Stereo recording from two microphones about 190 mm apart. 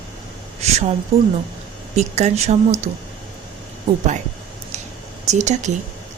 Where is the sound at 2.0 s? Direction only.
35° right (ahead or behind).